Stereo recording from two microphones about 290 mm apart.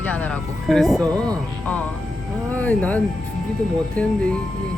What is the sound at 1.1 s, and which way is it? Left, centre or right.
Speech, centre.